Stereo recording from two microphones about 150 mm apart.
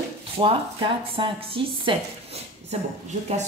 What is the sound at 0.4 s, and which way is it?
Speech, 35° right (ahead or behind).